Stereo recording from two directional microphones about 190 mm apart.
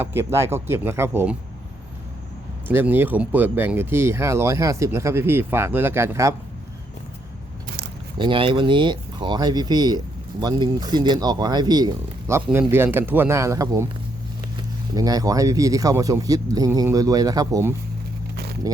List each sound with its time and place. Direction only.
0.0 s speech: 10° right (ahead or behind)
2.6 s speech: 10° right (ahead or behind)
8.2 s speech: 25° right (ahead or behind)